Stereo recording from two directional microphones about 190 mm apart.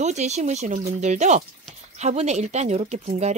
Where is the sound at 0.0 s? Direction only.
35° right (ahead or behind).